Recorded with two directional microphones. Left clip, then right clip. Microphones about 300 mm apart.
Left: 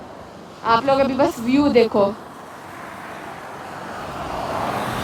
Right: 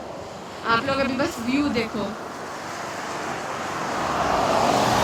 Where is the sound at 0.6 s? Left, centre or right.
Centre.